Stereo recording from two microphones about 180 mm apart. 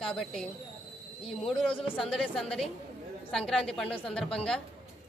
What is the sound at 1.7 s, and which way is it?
Speech, 30° left (ahead or behind).